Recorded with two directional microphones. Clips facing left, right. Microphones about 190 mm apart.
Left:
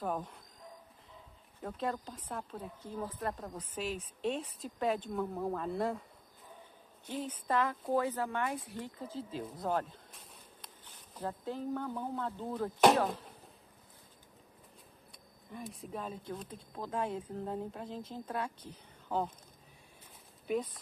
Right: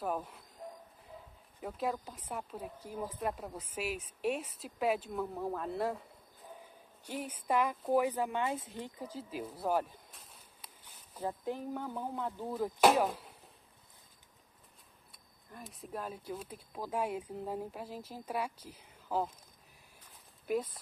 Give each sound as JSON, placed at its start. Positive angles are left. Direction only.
{"t": 0.0, "sound": "speech", "side_deg": -5}
{"t": 0.6, "sound": "a sound", "side_deg": -40}
{"t": 1.6, "sound": "speech", "side_deg": -5}
{"t": 7.1, "sound": "speech", "side_deg": -10}
{"t": 15.5, "sound": "speech", "side_deg": 0}
{"t": 20.4, "sound": "speech", "side_deg": 0}